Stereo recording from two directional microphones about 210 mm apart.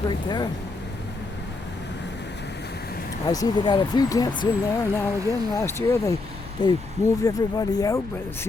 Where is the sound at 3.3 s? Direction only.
20° left (ahead or behind).